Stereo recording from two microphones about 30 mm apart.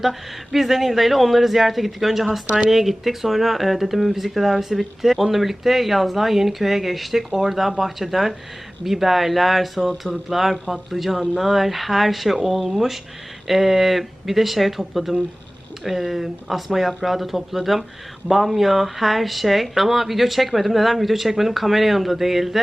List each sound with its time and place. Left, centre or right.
0.0 s speech: centre